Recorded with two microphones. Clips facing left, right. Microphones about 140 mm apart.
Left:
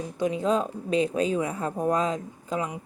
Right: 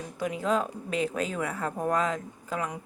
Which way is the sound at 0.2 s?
25° left (ahead or behind).